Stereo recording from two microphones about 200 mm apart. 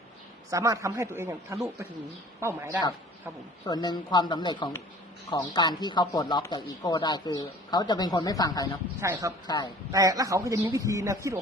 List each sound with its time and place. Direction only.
0.5 s a man's voice: 15° right (ahead or behind)
3.7 s speech: 20° left (ahead or behind)
9.0 s a man's voice: 15° right (ahead or behind)
9.5 s speech: 20° left (ahead or behind)
9.9 s a man's voice: 15° right (ahead or behind)